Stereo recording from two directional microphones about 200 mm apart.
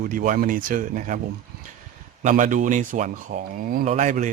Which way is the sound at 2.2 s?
40° right (ahead or behind).